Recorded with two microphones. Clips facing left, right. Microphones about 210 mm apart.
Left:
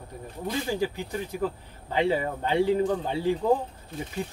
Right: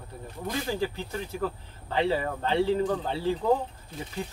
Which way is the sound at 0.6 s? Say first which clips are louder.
Left 2 dB; 15° left (ahead or behind).